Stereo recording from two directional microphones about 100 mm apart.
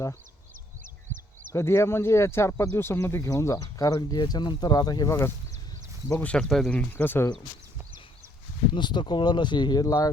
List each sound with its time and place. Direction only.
1.5 s speech: 25° left (ahead or behind); by 5.1 s 45° left (ahead or behind)
6.1 s speech: 15° left (ahead or behind)
8.7 s speech: 50° left (ahead or behind)